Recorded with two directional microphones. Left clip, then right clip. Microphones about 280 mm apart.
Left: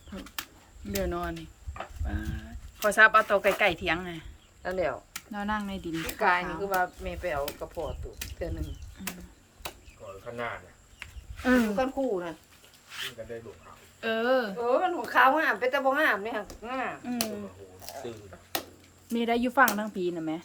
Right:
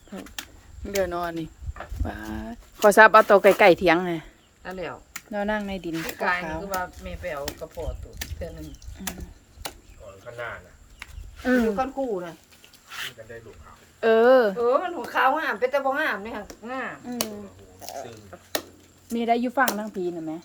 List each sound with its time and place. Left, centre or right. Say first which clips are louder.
0.9 s speech: right 6 dB; centre
4.6 s speech: left 4 dB; centre
5.1 s speech: right 5 dB; centre
6.1 s speech: left 1 dB; centre
11.4 s speech: right 3 dB; centre
14.0 s speech: right 10 dB; centre
14.7 s speech: right 2 dB; centre
19.0 s speech: right 4 dB; centre